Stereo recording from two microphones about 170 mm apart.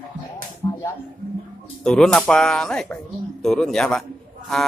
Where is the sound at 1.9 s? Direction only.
5° left (ahead or behind).